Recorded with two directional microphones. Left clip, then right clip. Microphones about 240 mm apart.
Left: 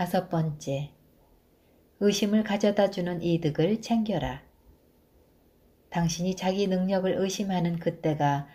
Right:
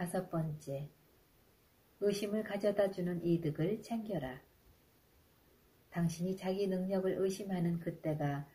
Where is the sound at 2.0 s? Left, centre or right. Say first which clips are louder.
Left 9 dB; left.